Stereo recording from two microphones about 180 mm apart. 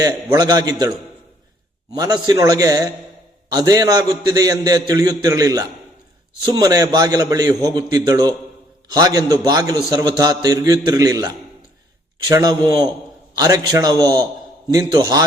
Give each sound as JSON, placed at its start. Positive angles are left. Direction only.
{"t": 0.0, "sound": "a man's voice", "side_deg": -20}
{"t": 2.0, "sound": "a man's voice", "side_deg": -20}